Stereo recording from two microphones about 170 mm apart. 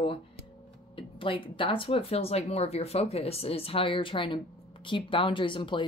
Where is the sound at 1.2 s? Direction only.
30° left (ahead or behind).